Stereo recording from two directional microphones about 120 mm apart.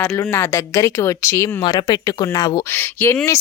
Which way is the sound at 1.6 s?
35° left (ahead or behind).